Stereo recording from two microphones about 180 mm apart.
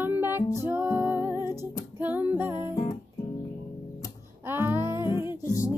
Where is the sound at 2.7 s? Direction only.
25° left (ahead or behind).